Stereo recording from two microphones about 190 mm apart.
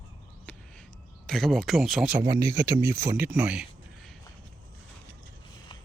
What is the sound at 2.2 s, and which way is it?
Speech, 15° right (ahead or behind).